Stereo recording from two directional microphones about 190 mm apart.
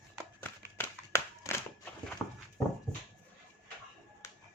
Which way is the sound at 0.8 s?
15° left (ahead or behind).